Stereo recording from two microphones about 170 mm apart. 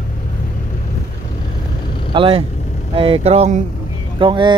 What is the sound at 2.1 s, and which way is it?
Speech, 30° right (ahead or behind).